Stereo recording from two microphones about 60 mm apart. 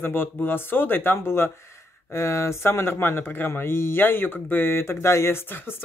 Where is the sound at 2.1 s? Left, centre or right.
Left.